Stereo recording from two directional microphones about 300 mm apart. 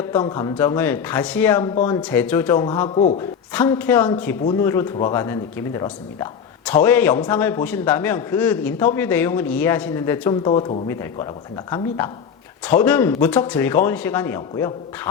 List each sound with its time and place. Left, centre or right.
0.1 s a man's voice: centre
10.5 s a man's voice: left